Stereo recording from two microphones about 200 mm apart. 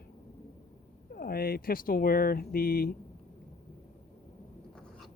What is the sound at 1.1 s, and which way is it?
Speech, 50° left (ahead or behind).